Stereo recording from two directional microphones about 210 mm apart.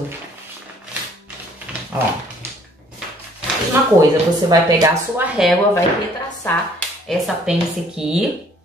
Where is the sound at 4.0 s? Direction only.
20° right (ahead or behind).